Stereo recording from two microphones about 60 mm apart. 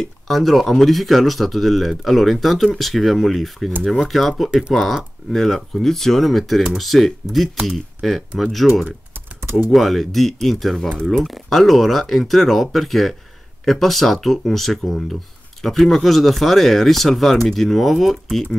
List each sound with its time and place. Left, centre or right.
0.0 s speech: centre
9.1 s typing: right
9.7 s speech: centre